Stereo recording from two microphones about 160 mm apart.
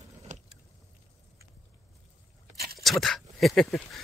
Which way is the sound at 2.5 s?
80° right.